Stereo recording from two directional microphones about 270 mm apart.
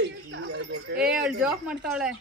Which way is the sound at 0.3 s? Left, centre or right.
Right.